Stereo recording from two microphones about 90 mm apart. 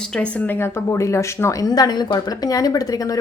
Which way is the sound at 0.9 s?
35° left (ahead or behind).